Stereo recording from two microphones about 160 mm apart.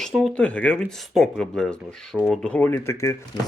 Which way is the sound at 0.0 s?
Centre (ahead or behind).